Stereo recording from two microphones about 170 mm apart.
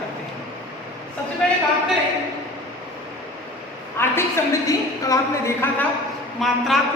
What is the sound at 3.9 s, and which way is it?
A woman's voice, 15° left (ahead or behind).